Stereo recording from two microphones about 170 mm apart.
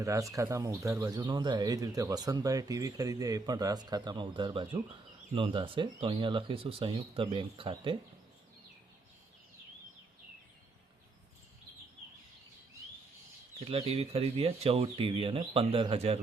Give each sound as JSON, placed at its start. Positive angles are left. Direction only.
{"t": 0.0, "sound": "speech", "side_deg": -20}
{"t": 13.7, "sound": "speech", "side_deg": -35}